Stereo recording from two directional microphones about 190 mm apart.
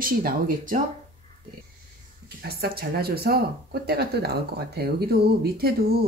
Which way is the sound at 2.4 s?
55° right (ahead or behind).